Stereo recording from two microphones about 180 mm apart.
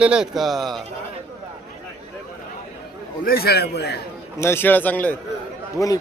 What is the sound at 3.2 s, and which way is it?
Speech, 55° left (ahead or behind).